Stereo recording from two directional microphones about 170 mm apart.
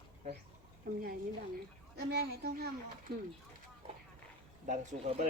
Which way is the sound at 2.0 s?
70° right (ahead or behind).